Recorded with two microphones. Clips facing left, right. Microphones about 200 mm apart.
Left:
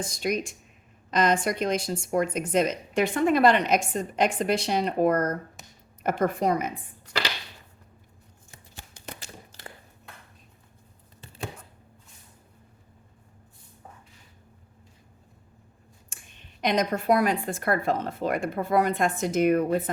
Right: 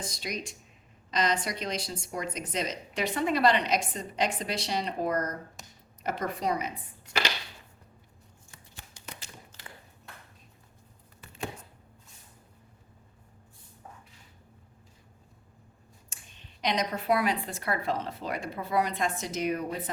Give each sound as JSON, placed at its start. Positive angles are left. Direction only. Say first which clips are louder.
{"t": 0.1, "sound": "speech", "louder": "left 9 dB", "side_deg": 50}
{"t": 9.0, "sound": "tap", "louder": "left 5 dB", "side_deg": 60}
{"t": 16.6, "sound": "speech", "louder": "left 5 dB", "side_deg": 50}